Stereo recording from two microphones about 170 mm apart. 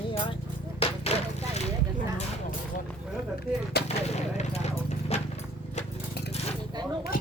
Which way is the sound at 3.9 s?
40° left (ahead or behind).